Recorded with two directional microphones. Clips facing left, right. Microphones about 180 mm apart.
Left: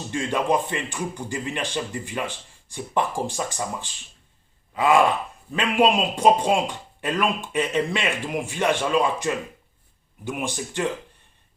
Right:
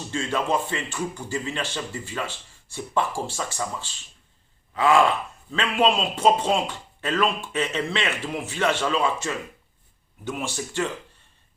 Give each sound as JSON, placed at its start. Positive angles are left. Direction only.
{"t": 0.1, "sound": "speech", "side_deg": 15}
{"t": 4.7, "sound": "gasp", "side_deg": 10}
{"t": 5.5, "sound": "speech", "side_deg": 10}